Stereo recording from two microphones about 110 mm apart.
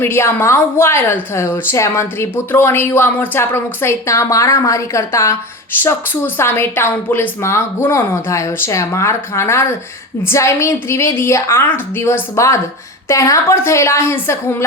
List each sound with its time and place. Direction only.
0.0 s a woman's voice: 20° left (ahead or behind)